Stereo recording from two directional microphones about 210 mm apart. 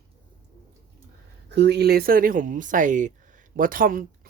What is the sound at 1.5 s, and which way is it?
Speech, 55° right (ahead or behind).